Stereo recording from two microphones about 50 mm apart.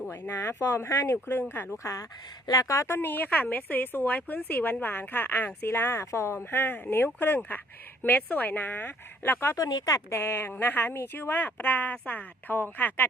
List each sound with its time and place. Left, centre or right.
0.1 s speech: left
0.8 s speech: left
1.3 s speech: left
1.7 s speech: left
2.6 s speech: left
2.9 s a woman's voice: left
6.0 s a woman's voice: left